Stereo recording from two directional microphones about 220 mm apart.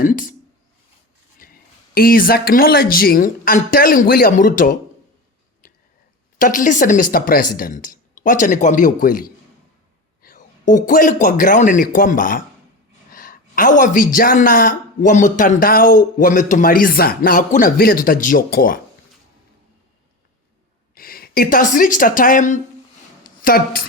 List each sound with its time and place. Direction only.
0.0 s speech: 40° left (ahead or behind)
2.0 s speech: 40° left (ahead or behind)
6.4 s a man's voice: 35° left (ahead or behind)
20.9 s a woman's voice: 40° left (ahead or behind)
23.2 s a sound: 40° left (ahead or behind)